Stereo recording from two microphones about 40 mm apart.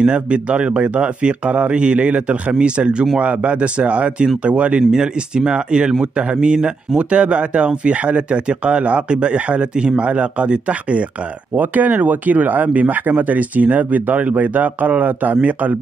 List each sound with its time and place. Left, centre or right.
0.0 s speech: right
4.9 s speech: right
11.5 s speech: right